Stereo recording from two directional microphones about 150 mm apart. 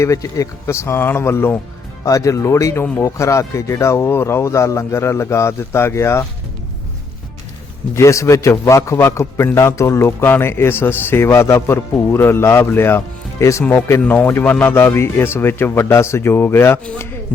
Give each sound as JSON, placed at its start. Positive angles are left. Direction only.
{"t": 0.0, "sound": "a man's voice", "side_deg": 20}
{"t": 7.9, "sound": "a man's voice", "side_deg": 20}